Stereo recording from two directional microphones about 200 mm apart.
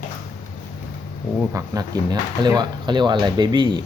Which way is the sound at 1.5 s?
20° right (ahead or behind).